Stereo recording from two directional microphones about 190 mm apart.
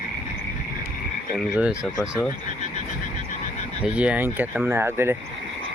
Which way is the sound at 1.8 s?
5° left (ahead or behind).